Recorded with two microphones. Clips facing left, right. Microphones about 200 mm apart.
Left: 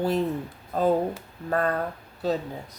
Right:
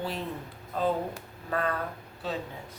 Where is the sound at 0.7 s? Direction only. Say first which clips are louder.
Left 6 dB; 40° left (ahead or behind).